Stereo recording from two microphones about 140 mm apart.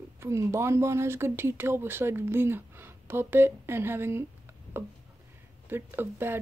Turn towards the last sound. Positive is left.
turn(degrees=-15)  # may be behind; listen again after turning